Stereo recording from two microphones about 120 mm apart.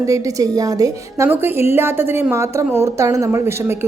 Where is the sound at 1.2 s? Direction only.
20° right (ahead or behind).